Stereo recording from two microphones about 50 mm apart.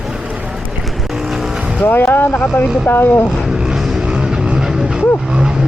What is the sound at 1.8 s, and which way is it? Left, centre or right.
Speech, left.